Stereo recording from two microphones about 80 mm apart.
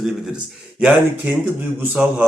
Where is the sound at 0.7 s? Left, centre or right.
Centre.